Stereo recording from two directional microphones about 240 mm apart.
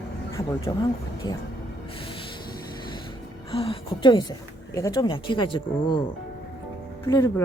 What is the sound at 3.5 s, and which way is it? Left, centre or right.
Speech, left.